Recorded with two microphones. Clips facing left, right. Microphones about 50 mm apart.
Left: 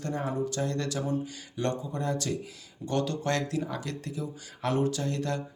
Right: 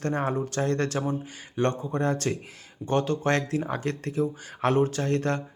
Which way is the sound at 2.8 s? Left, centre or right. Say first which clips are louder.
Right 4 dB; right.